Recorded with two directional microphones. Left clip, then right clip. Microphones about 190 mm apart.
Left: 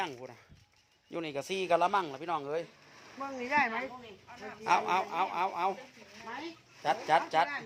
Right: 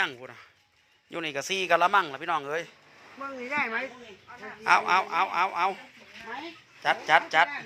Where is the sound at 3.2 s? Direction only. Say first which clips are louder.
Even; 40° left (ahead or behind).